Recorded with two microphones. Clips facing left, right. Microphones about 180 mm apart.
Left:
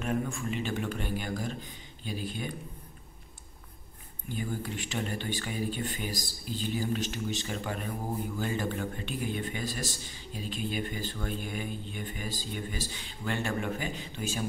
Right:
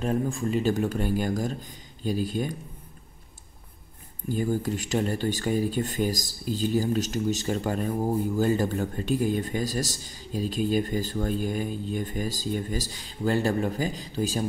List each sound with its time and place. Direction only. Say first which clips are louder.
0.0 s a man's voice: right 5 dB; 35° right (ahead or behind)
4.3 s a man's voice: right 8 dB; 40° right (ahead or behind)